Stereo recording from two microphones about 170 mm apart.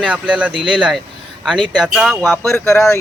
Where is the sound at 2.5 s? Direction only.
15° left (ahead or behind).